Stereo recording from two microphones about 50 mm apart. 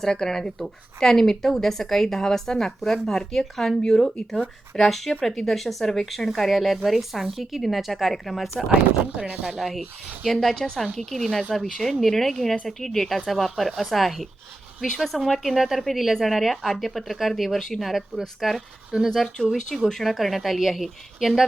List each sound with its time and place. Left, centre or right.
0.0 s a woman's voice: centre
9.2 s speech: right
9.6 s speech: centre